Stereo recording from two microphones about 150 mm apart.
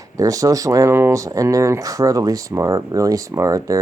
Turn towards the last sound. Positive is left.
turn(degrees=-20)  # may be behind; listen again after turning